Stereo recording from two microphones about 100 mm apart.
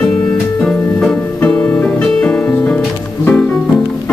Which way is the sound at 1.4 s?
15° left (ahead or behind).